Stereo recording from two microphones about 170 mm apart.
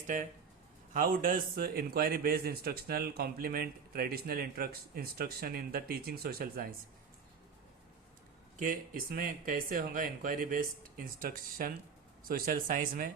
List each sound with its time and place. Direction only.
0.9 s a man's voice: 55° right (ahead or behind)
8.5 s a man's voice: 55° right (ahead or behind)